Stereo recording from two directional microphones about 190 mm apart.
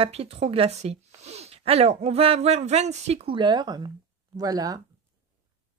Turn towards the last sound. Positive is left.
turn(degrees=-20)  # may be behind; listen again after turning